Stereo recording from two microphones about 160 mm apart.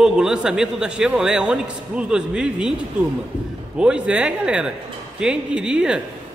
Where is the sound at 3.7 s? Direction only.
5° right (ahead or behind).